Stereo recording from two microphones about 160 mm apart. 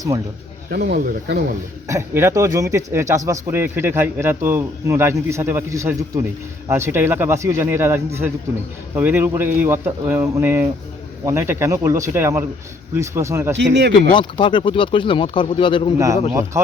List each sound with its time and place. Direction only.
0.7 s speech: 75° right (ahead or behind)
1.9 s a man's voice: 15° right (ahead or behind)
13.6 s speech: 90° right
14.1 s speech: 30° left (ahead or behind)